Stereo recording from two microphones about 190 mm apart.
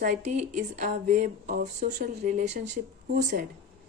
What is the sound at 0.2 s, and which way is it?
Speech, 35° right (ahead or behind).